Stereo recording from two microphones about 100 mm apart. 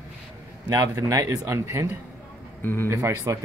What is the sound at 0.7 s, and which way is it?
Speech, 35° right (ahead or behind).